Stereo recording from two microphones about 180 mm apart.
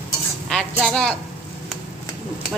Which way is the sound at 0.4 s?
5° left (ahead or behind).